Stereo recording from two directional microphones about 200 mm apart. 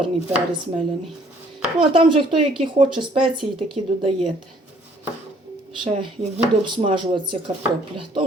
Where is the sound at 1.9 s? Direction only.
25° right (ahead or behind).